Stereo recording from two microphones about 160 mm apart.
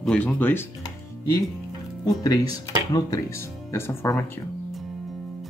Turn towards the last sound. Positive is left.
turn(degrees=15)  # may be behind; listen again after turning